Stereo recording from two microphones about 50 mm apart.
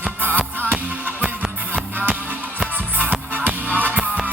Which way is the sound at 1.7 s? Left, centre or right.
Right.